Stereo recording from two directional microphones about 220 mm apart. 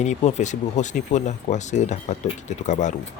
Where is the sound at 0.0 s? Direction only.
30° left (ahead or behind).